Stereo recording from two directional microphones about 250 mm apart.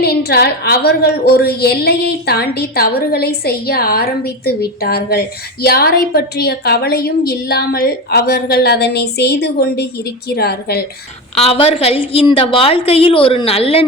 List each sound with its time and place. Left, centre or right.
0.0 s a woman's voice: left
11.3 s a woman's voice: left